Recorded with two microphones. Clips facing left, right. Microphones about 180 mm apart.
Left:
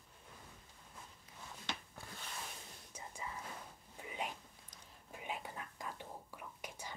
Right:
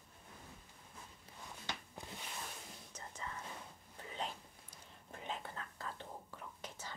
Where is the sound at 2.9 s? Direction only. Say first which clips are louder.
Left 2 dB; 10° left (ahead or behind).